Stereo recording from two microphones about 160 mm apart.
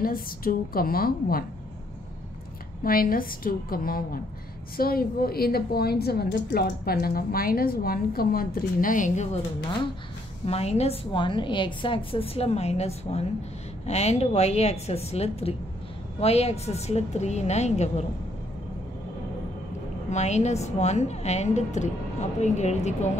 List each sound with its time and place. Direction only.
0.0 s a woman's voice: 65° left (ahead or behind)
2.8 s a woman's voice: 65° left (ahead or behind); by 9.4 s 45° left (ahead or behind)
10.4 s a woman's voice: 40° left (ahead or behind)
20.1 s a woman's voice: 45° left (ahead or behind)